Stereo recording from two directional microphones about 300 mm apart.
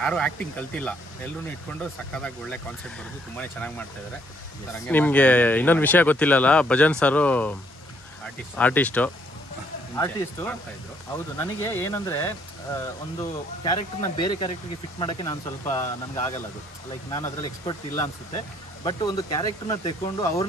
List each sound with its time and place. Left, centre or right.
0.0 s speech: centre
2.1 s speech: centre
4.8 s speech: centre
8.5 s speech: centre